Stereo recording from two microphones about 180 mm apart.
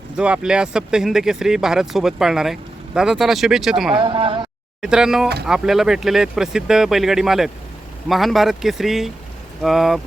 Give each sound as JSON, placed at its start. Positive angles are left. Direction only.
{"t": 0.2, "sound": "speech", "side_deg": -5}
{"t": 3.9, "sound": "speech", "side_deg": -30}
{"t": 4.8, "sound": "speech", "side_deg": -5}